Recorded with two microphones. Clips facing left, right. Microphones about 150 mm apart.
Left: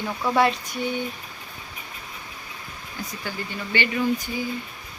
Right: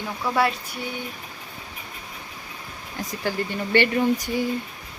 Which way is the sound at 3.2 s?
65° right (ahead or behind).